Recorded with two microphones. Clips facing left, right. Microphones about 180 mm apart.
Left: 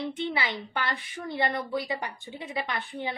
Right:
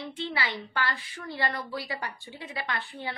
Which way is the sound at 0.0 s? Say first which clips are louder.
Left 3 dB; 20° left (ahead or behind).